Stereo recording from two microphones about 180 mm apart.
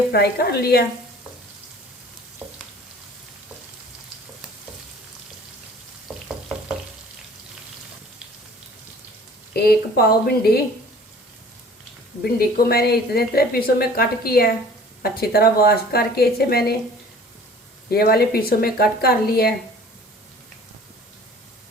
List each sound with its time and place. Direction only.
0.1 s a woman's voice: 60° left (ahead or behind)
6.1 s frying: centre (ahead or behind)
9.5 s a woman's voice: 60° left (ahead or behind)
12.2 s a woman's voice: 60° left (ahead or behind)
17.9 s a woman's voice: 60° left (ahead or behind)